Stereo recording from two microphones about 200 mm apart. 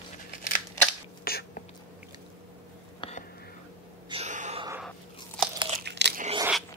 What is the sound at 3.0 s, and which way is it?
Whispering, 35° left (ahead or behind).